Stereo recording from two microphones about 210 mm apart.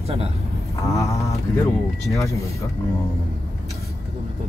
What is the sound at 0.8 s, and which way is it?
Speech, 15° left (ahead or behind).